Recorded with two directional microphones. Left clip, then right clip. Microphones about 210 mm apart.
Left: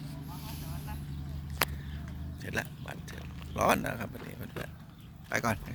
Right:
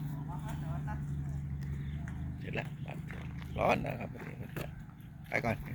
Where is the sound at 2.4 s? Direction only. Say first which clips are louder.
Left 5 dB; 25° left (ahead or behind).